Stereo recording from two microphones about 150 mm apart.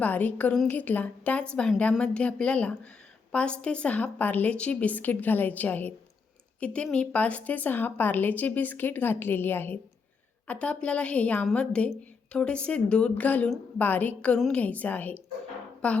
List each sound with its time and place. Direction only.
0.0 s speech: 10° left (ahead or behind)